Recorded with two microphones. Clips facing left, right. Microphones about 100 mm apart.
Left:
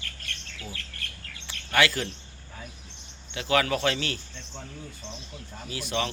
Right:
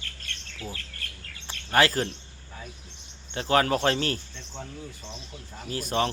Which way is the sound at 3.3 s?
35° right (ahead or behind).